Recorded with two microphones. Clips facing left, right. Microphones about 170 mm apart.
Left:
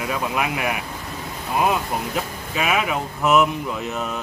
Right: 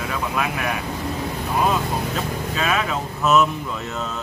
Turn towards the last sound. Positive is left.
turn(degrees=15)  # may be behind; listen again after turning